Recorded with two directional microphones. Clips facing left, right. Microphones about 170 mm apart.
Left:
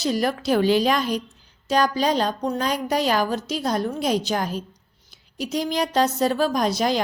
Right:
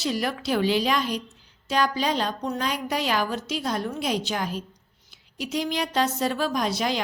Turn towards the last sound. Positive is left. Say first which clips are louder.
# left 4 dB
turn(degrees=40)  # may be behind; listen again after turning